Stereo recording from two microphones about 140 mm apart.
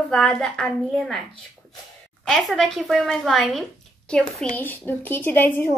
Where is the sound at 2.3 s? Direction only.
Centre (ahead or behind).